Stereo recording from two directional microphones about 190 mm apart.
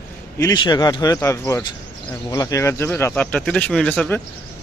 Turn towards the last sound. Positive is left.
turn(degrees=5)  # may be behind; listen again after turning